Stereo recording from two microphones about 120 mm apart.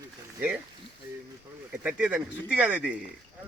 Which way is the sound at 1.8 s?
10° right (ahead or behind).